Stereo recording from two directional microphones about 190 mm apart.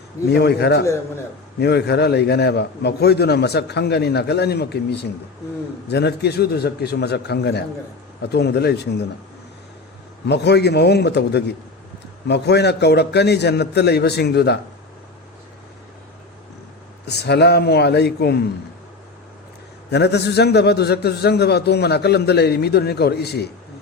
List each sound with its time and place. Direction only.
0.3 s a man's voice: 60° left (ahead or behind)
10.2 s a man's voice: 60° left (ahead or behind)
17.1 s a man's voice: 60° left (ahead or behind)
19.9 s a man's voice: 60° left (ahead or behind)